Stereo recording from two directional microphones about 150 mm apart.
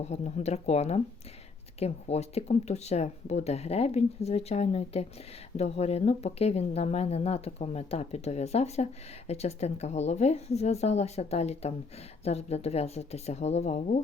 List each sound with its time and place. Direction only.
0.0 s speech: 45° left (ahead or behind)